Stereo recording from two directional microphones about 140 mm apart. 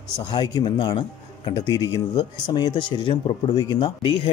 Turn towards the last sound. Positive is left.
turn(degrees=35)  # may be behind; listen again after turning